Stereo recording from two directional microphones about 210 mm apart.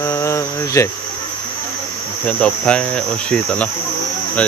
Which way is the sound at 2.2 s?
5° left (ahead or behind).